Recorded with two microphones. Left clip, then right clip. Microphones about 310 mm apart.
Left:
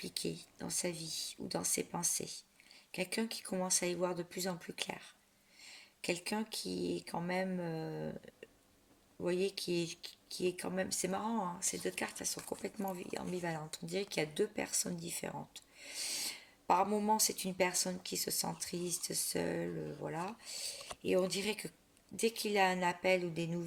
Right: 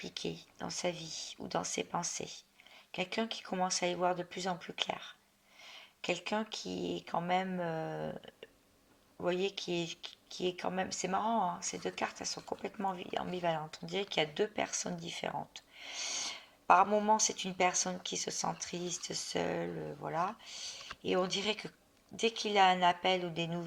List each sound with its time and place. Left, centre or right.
0.0 s speech: left
6.7 s speech: centre
6.9 s speech: left
9.2 s speech: left
15.0 s a sound: left
17.0 s speech: left